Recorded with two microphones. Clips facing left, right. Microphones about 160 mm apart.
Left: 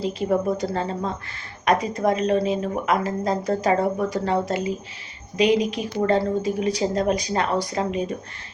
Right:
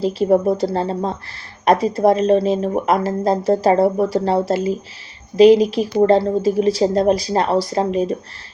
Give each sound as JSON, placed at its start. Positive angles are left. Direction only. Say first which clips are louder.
{"t": 0.1, "sound": "speech", "louder": "right 7 dB", "side_deg": -35}